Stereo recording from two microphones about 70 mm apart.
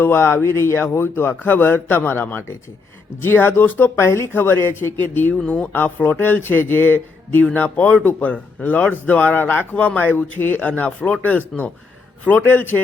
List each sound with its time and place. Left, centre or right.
0.0 s speech: left
3.9 s speech: left